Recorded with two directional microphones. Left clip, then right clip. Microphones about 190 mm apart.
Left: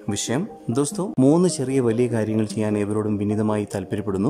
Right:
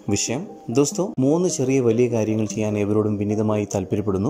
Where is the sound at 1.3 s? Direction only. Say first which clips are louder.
Even; 10° left (ahead or behind).